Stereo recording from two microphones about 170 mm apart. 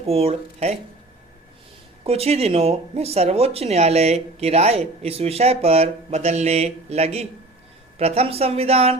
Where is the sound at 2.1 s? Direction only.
35° right (ahead or behind).